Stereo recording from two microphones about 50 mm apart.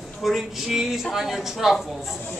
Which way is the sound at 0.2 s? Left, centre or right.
Centre.